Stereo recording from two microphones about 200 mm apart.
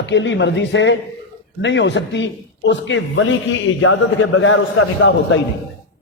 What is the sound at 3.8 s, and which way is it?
A man's voice, 90° left.